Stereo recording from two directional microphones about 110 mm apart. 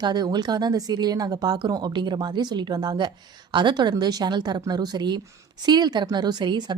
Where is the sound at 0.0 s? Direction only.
40° right (ahead or behind).